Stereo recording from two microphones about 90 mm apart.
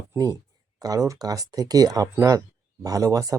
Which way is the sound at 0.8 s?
40° right (ahead or behind).